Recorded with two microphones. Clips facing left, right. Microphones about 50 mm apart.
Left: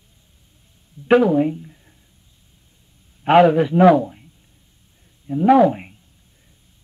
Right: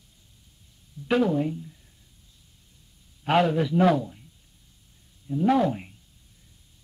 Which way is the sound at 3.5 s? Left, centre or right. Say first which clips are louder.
Left 7 dB; left.